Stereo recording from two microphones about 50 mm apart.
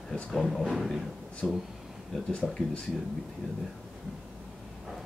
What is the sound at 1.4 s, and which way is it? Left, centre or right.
Speech, centre.